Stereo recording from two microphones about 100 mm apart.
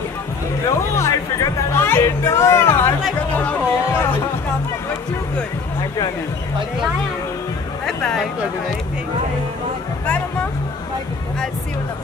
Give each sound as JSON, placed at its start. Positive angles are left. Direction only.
{"t": 0.7, "sound": "music", "side_deg": 30}
{"t": 7.8, "sound": "music", "side_deg": 5}